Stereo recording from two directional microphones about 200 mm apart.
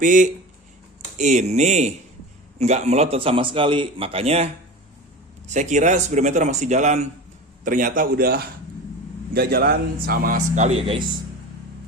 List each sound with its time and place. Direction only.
0.0 s a man's voice: 40° right (ahead or behind)
5.5 s a man's voice: 35° right (ahead or behind)